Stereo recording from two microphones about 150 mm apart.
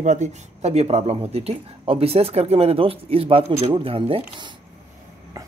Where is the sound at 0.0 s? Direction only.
50° right (ahead or behind).